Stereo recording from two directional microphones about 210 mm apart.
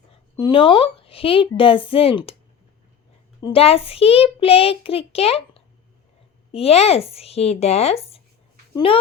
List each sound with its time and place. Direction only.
0.3 s a child's voice: 20° left (ahead or behind)
3.4 s a child's voice: 25° left (ahead or behind)